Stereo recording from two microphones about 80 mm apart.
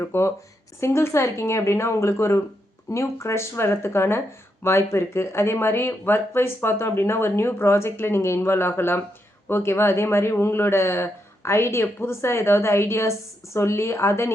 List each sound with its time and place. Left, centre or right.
0.0 s speech: left